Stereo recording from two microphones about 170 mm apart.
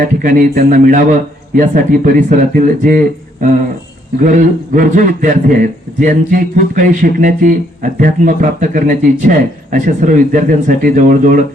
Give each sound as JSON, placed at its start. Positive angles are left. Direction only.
{"t": 0.0, "sound": "a man's voice", "side_deg": -55}